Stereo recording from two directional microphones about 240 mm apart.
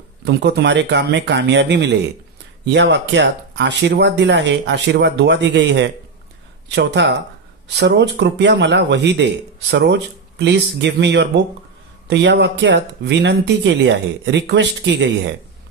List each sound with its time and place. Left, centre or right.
0.2 s a man's voice: right